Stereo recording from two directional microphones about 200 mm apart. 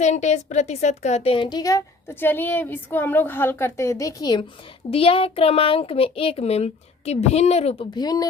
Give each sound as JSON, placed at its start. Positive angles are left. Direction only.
{"t": 0.0, "sound": "a woman's voice", "side_deg": 35}